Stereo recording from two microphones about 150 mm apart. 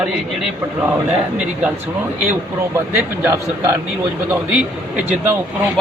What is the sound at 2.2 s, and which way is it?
A man's voice, 15° right (ahead or behind).